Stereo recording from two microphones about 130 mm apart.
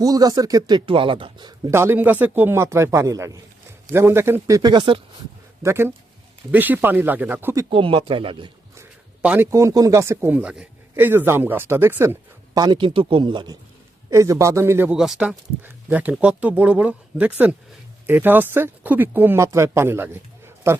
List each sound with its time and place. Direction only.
0.0 s speech: 30° right (ahead or behind)
0.9 s a man's voice: 40° right (ahead or behind)
1.7 s speech: 20° right (ahead or behind); by 4.9 s 35° right (ahead or behind)
5.6 s speech: 20° right (ahead or behind)
7.7 s a man's voice: 40° right (ahead or behind)
9.2 s speech: 10° right (ahead or behind)
9.5 s speech: 25° right (ahead or behind)
12.5 s a man's voice: 35° right (ahead or behind)
14.1 s speech: 25° right (ahead or behind)
14.9 s speech: 5° right (ahead or behind); by 20.8 s 20° right (ahead or behind)